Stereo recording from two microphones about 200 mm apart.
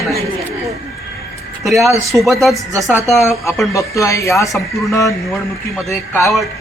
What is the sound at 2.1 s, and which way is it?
Speech, 5° right (ahead or behind).